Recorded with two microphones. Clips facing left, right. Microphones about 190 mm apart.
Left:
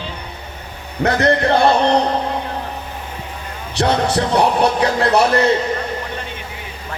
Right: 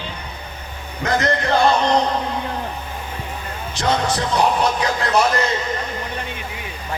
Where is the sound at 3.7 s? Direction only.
65° left (ahead or behind).